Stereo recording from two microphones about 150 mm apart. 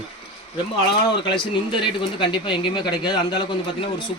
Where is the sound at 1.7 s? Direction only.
35° left (ahead or behind).